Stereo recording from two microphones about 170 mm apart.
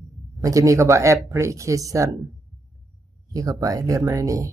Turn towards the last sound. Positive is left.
turn(degrees=-20)  # may be behind; listen again after turning